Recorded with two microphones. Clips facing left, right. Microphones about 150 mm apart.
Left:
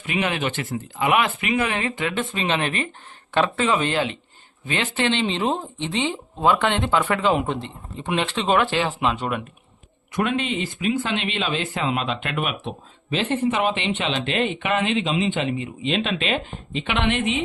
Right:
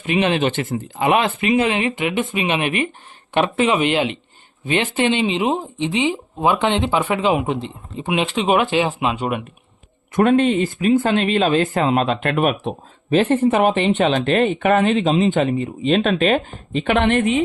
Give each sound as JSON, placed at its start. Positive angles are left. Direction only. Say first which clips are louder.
{"t": 0.0, "sound": "speech", "louder": "right 6 dB", "side_deg": -25}
{"t": 10.1, "sound": "speech", "louder": "right 9 dB", "side_deg": -45}